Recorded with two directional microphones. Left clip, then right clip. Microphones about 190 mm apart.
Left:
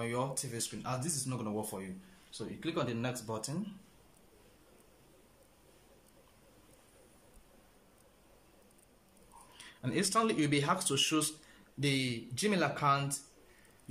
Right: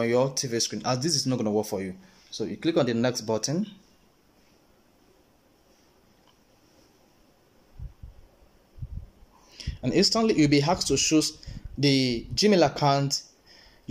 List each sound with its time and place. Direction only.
0.0 s speech: 45° right (ahead or behind)
9.6 s speech: 25° right (ahead or behind)